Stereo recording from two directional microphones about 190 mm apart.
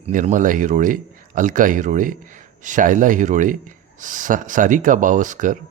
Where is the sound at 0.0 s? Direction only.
40° right (ahead or behind).